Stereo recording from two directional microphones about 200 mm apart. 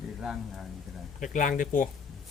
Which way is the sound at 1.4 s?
40° left (ahead or behind).